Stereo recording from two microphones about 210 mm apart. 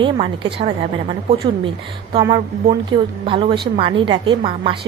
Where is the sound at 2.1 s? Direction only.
20° right (ahead or behind).